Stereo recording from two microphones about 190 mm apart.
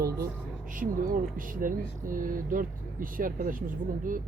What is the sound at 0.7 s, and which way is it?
Speech, 45° right (ahead or behind).